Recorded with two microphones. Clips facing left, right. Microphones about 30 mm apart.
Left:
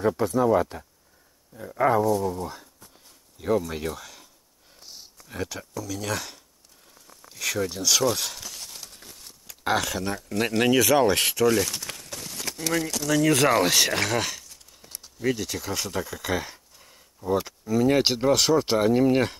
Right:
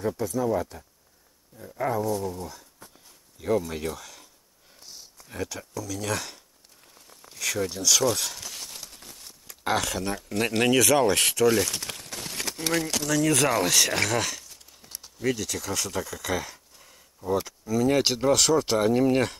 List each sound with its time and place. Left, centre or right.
0.0 s speech: left
3.3 s speech: centre
8.6 s a sound: centre
10.6 s speech: centre
12.5 s speech: right
13.1 s speech: centre
14.4 s crumpling: centre
15.3 s speech: centre
16.5 s a sound: centre
17.3 s speech: centre